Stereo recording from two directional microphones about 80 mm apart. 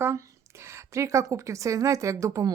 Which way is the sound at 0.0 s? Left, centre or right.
Right.